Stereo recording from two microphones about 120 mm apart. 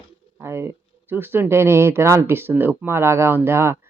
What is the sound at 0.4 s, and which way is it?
Speech, 20° right (ahead or behind).